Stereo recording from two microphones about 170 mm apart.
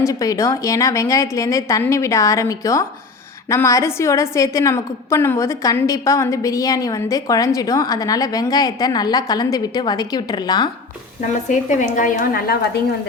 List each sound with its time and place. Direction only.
0.0 s a woman's voice: 20° left (ahead or behind)
11.4 s a woman's voice: 45° left (ahead or behind)